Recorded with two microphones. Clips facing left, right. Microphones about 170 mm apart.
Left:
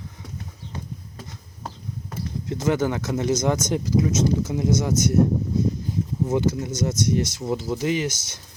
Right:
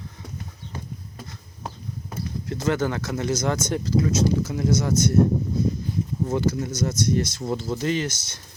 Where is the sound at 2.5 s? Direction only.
15° left (ahead or behind).